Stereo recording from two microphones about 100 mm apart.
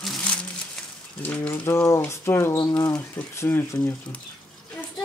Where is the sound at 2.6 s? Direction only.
35° left (ahead or behind).